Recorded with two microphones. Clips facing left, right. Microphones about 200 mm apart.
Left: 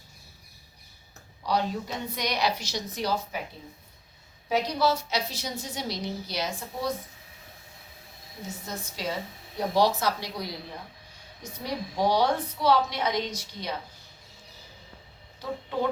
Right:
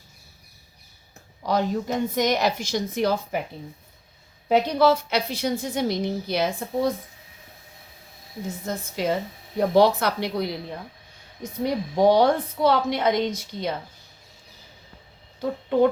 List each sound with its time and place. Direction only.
1.5 s a woman's voice: 45° right (ahead or behind)
4.4 s a woman's voice: 55° right (ahead or behind)
8.6 s a woman's voice: 55° right (ahead or behind)
11.6 s a woman's voice: 50° right (ahead or behind)